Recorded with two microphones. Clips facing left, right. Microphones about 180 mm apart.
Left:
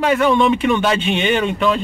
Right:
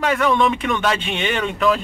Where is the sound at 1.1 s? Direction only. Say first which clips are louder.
Left 5 dB; centre (ahead or behind).